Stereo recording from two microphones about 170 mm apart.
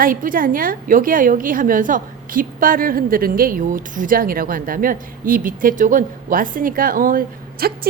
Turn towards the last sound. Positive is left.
turn(degrees=-60)  # may be behind; listen again after turning